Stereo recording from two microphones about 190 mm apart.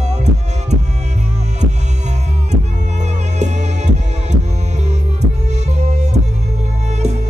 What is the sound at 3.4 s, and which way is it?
Music, 40° right (ahead or behind).